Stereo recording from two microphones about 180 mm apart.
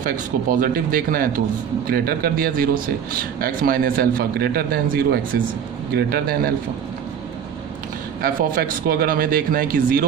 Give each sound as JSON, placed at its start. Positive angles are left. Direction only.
{"t": 0.0, "sound": "a man's voice", "side_deg": -50}
{"t": 8.2, "sound": "speech", "side_deg": -50}